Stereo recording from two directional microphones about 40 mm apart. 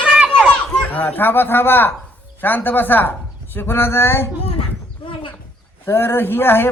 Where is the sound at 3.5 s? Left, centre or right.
Left.